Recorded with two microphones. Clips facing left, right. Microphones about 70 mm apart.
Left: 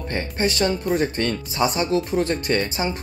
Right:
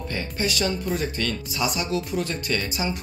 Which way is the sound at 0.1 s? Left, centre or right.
Left.